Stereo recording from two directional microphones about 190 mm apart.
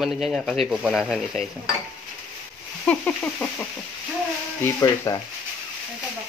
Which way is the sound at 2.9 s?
5° left (ahead or behind).